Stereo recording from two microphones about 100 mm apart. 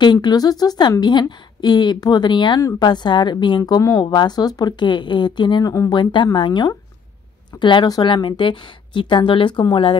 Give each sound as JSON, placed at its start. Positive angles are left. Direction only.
{"t": 0.0, "sound": "a woman's voice", "side_deg": 45}
{"t": 5.6, "sound": "a woman's voice", "side_deg": 35}